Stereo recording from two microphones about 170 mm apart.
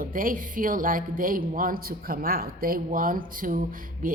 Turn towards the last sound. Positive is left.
turn(degrees=-55)  # may be behind; listen again after turning